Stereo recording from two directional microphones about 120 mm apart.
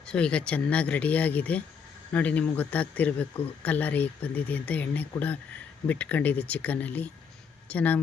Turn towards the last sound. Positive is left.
turn(degrees=15)  # may be behind; listen again after turning